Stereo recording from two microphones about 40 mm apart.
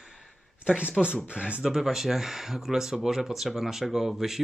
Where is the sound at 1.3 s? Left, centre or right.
Right.